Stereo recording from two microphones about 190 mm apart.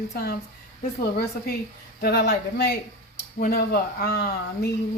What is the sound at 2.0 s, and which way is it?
Speech, 60° left (ahead or behind).